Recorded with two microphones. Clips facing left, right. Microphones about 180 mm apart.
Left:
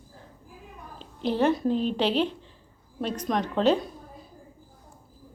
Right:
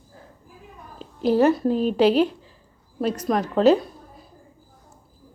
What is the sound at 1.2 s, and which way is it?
Speech, 5° right (ahead or behind).